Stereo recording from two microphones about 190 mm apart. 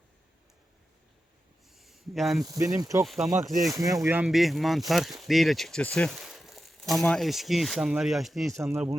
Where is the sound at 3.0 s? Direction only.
Centre (ahead or behind).